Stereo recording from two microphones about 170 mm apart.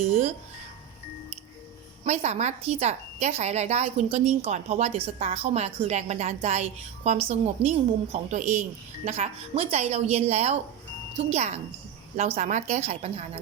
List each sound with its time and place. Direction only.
2.0 s a woman's voice: 40° right (ahead or behind)